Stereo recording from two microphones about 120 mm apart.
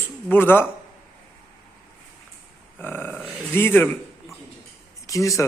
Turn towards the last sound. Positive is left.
turn(degrees=25)  # may be behind; listen again after turning